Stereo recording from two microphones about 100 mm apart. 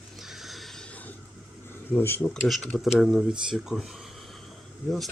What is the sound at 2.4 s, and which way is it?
Speech, centre (ahead or behind).